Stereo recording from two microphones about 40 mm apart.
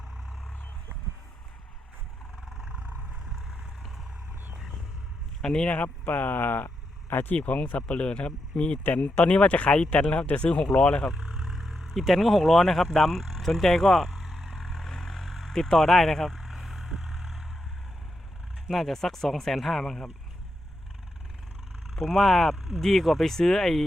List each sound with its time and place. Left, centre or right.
5.4 s speech: centre
5.6 s speech: left
6.1 s speech: left
7.3 s speech: left
7.8 s speech: left
8.8 s speech: left
9.3 s speech: left
11.1 s vehicle: right
11.4 s vehicle: centre
11.9 s speech: centre
14.2 s vehicle: centre
16.4 s vehicle: centre
18.7 s speech: centre
21.9 s speech: centre